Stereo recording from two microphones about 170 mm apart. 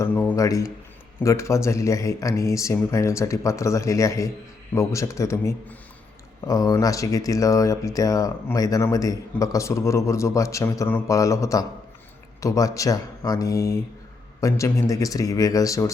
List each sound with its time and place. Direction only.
0.0 s speech: 10° left (ahead or behind)